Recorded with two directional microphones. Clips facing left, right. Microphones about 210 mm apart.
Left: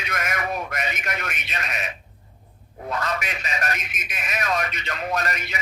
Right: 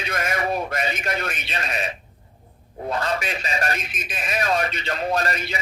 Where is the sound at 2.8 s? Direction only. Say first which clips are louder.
Right 3 dB; 30° right (ahead or behind).